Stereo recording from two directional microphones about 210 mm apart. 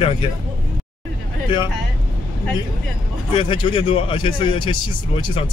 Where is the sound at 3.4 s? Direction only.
25° left (ahead or behind).